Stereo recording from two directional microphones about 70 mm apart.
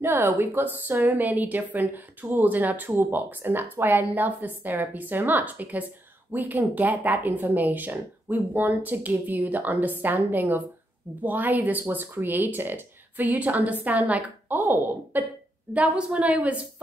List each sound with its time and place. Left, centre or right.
0.0 s speech: right
15.7 s speech: centre